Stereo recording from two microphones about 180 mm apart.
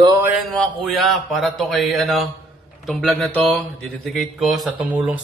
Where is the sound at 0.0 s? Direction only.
15° right (ahead or behind).